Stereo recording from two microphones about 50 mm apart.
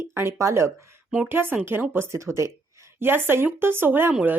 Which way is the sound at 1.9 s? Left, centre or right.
Right.